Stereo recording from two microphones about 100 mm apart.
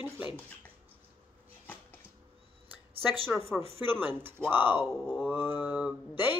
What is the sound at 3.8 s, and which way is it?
Speech, 20° right (ahead or behind).